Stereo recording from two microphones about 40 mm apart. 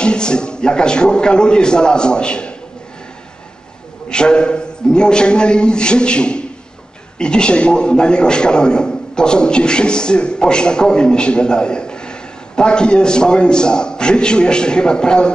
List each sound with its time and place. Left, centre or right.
0.0 s a man's voice: left
4.1 s a man's voice: left